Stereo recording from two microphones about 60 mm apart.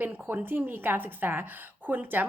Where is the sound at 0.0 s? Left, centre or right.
Right.